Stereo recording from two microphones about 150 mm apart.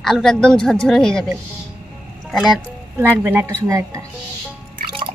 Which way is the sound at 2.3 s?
Centre (ahead or behind).